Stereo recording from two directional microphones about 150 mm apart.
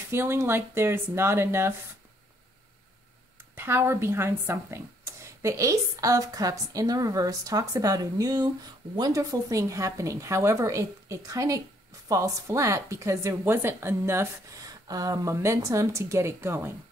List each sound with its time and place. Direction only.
0.1 s speech: 15° right (ahead or behind)
3.5 s a woman's voice: 15° right (ahead or behind)